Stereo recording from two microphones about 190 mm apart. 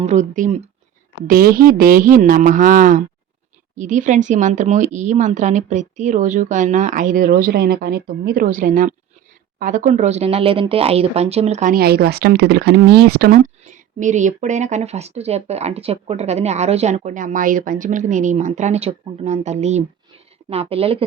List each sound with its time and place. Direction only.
0.0 s a woman's voice: 40° right (ahead or behind)
11.7 s speech: 55° right (ahead or behind)
13.4 s speech: 40° right (ahead or behind)